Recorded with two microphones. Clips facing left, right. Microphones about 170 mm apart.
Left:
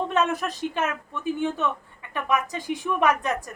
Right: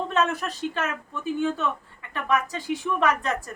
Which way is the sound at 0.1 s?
15° left (ahead or behind).